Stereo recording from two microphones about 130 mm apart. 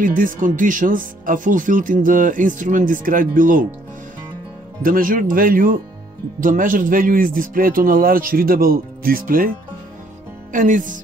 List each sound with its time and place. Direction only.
0.0 s speech: 90° right
4.8 s speech: 90° right